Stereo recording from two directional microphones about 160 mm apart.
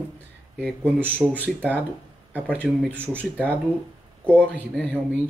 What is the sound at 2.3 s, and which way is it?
Speech, 10° right (ahead or behind).